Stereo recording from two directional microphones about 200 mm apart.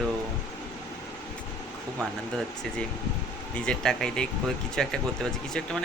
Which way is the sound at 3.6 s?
5° left (ahead or behind).